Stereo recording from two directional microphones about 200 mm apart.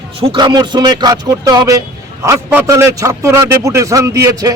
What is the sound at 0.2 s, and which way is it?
A man's voice, 25° right (ahead or behind).